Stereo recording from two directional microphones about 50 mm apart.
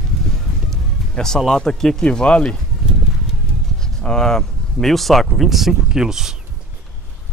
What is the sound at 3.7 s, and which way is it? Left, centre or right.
Speech, centre.